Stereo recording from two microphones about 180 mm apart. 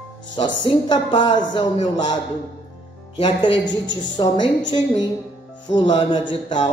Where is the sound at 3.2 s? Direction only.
30° left (ahead or behind).